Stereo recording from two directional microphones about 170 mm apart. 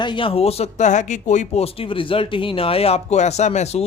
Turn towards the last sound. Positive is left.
turn(degrees=40)  # may be behind; listen again after turning